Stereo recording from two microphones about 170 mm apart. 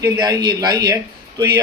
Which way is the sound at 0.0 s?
20° right (ahead or behind).